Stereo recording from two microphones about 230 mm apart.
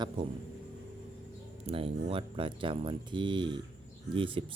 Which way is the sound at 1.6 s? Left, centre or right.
Right.